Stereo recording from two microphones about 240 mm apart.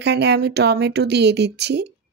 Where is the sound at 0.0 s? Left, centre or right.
Right.